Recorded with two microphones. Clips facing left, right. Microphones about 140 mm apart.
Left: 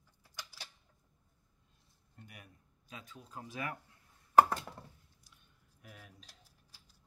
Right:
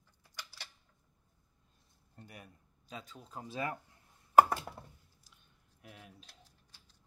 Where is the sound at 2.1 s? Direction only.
35° right (ahead or behind).